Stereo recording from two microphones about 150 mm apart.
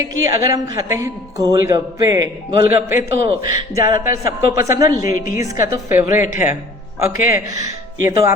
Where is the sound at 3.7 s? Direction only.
20° right (ahead or behind).